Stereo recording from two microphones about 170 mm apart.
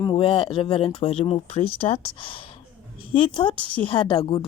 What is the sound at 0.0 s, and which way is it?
A child's voice, 30° left (ahead or behind).